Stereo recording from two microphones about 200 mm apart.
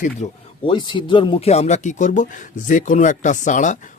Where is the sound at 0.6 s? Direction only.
25° left (ahead or behind).